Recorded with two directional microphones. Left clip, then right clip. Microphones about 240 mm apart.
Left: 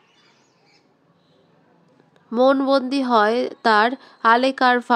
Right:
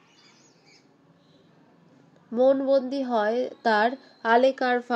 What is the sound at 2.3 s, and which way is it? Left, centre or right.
Speech, left.